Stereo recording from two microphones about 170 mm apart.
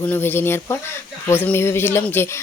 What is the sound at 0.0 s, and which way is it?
Speech, 10° left (ahead or behind).